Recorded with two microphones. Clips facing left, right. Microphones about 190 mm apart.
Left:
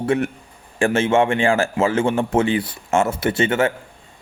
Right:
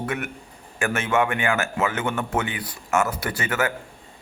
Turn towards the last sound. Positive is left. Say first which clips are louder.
# left 7 dB
turn(degrees=25)  # may be behind; listen again after turning